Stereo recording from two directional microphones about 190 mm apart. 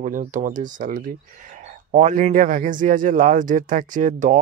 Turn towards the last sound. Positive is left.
turn(degrees=-40)  # may be behind; listen again after turning